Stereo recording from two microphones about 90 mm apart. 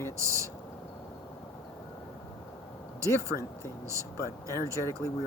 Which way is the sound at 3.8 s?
35° right (ahead or behind).